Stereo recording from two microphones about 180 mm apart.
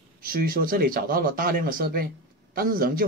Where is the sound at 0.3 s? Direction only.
55° right (ahead or behind).